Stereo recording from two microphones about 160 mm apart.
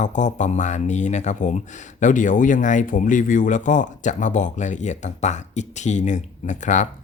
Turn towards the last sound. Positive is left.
turn(degrees=50)  # may be behind; listen again after turning